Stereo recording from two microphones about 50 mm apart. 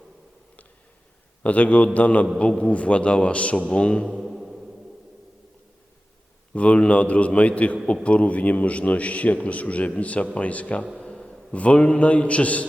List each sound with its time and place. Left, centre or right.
1.4 s a man's voice: left
4.1 s music: centre
6.5 s a man's voice: left
10.9 s a sound: centre
11.5 s a man's voice: left